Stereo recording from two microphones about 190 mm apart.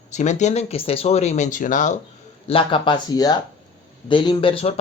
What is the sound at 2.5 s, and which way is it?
Speech, 30° left (ahead or behind).